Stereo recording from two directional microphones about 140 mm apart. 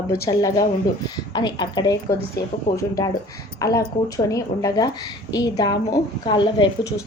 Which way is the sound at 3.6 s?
25° left (ahead or behind).